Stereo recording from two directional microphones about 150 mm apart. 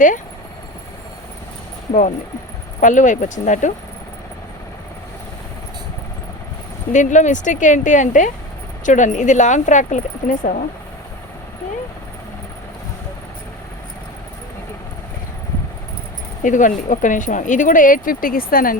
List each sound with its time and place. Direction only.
1.9 s speech: 50° left (ahead or behind)
6.9 s speech: 55° left (ahead or behind)
16.4 s speech: 60° left (ahead or behind); by 18.8 s 75° left (ahead or behind)